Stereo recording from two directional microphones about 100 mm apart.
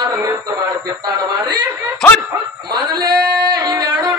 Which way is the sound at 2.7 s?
45° right (ahead or behind).